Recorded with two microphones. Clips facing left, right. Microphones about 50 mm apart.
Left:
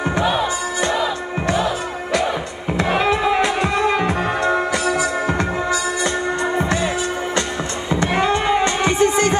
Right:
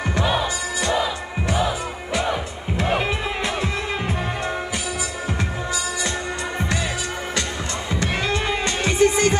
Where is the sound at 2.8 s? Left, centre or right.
Left.